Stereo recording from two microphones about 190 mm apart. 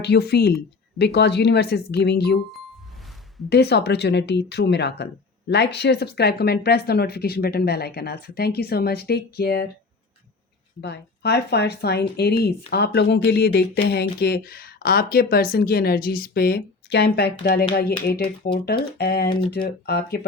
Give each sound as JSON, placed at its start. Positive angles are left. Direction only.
{"t": 0.0, "sound": "speech", "side_deg": 60}
{"t": 3.5, "sound": "speech", "side_deg": 60}
{"t": 10.8, "sound": "a woman's voice", "side_deg": 65}